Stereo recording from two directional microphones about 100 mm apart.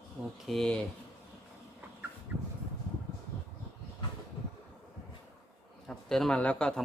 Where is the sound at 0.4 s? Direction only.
5° left (ahead or behind).